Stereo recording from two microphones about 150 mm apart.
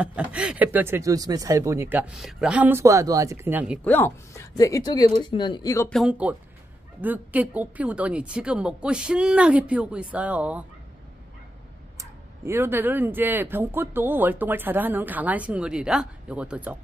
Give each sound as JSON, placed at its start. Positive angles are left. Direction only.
{"t": 0.0, "sound": "speech", "side_deg": -10}
{"t": 3.8, "sound": "speech", "side_deg": 15}
{"t": 5.9, "sound": "speech", "side_deg": 0}
{"t": 7.0, "sound": "speech", "side_deg": -10}
{"t": 12.0, "sound": "speech", "side_deg": -15}